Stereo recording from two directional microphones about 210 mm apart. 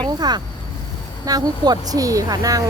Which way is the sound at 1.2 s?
15° right (ahead or behind).